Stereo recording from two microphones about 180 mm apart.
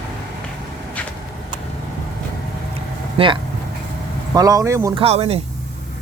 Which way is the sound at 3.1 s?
30° right (ahead or behind).